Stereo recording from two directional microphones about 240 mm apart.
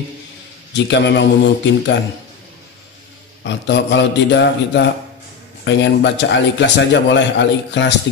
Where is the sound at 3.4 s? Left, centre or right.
Left.